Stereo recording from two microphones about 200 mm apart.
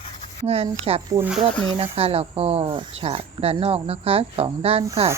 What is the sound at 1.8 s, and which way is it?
Speech, 30° right (ahead or behind).